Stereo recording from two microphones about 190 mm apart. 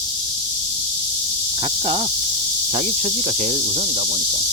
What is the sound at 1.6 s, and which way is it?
Snake, 25° right (ahead or behind).